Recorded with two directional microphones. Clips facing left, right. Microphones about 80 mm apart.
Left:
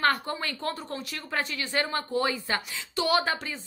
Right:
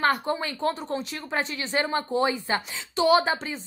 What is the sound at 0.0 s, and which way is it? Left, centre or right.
A woman's voice, centre.